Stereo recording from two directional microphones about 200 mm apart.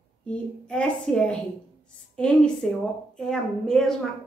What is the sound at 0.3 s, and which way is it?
A woman's voice, 5° left (ahead or behind).